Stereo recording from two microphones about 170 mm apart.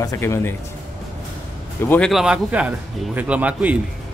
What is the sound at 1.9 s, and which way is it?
Speech, centre (ahead or behind).